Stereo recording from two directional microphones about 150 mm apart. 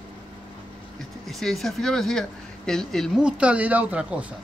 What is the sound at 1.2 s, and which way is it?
Speech, centre (ahead or behind).